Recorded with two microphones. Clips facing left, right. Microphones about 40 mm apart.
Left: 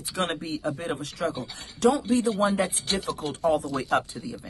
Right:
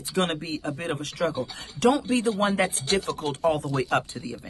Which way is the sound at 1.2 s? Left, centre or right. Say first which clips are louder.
Right 3 dB; right.